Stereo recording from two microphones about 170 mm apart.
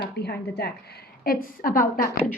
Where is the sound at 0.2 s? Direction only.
75° left (ahead or behind).